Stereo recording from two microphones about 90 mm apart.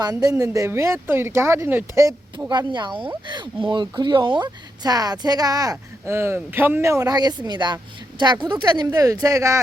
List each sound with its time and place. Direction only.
0.0 s speech: 45° right (ahead or behind)
2.5 s speech: 55° right (ahead or behind)
6.1 s speech: 30° right (ahead or behind)
6.9 s speech: 45° right (ahead or behind)